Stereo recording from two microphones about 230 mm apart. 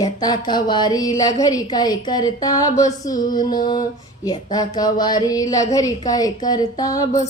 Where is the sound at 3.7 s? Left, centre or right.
Centre.